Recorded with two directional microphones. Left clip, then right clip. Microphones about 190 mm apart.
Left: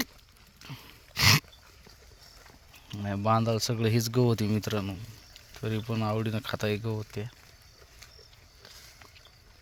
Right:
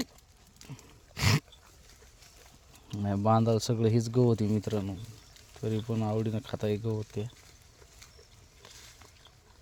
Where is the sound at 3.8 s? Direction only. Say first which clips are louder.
Left 1 dB; 15° right (ahead or behind).